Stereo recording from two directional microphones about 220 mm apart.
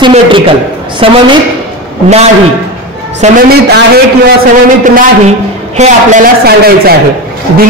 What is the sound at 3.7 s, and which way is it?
A man's voice, 45° right (ahead or behind).